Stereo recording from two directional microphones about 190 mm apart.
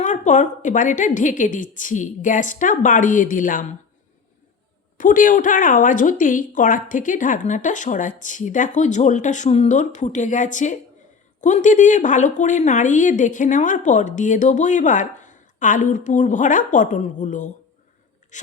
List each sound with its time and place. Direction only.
0.0 s a woman's voice: 40° left (ahead or behind)
4.9 s a woman's voice: 45° left (ahead or behind)